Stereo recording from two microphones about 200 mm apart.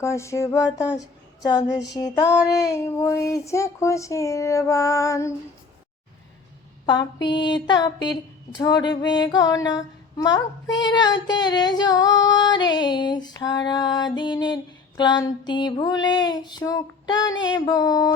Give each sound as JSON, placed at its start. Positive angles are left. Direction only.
{"t": 0.0, "sound": "speech", "side_deg": 15}
{"t": 6.8, "sound": "female singing", "side_deg": 20}